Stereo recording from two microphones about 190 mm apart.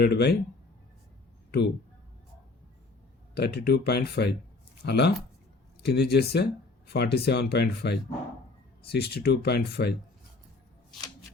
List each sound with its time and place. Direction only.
0.0 s speech: 60° left (ahead or behind)
3.3 s speech: 60° left (ahead or behind)